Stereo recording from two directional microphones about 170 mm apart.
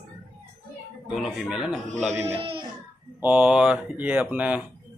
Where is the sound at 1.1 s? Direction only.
Centre (ahead or behind).